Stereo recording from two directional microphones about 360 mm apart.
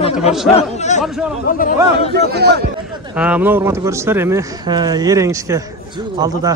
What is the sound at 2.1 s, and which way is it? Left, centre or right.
Speech, right.